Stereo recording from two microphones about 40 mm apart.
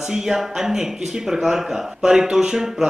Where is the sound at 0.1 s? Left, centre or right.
Centre.